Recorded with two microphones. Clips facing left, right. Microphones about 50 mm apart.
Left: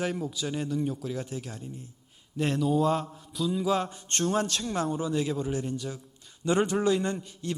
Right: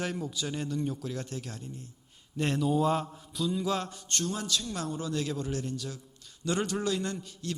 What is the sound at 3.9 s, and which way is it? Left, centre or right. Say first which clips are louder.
A man's voice: left 6 dB; left.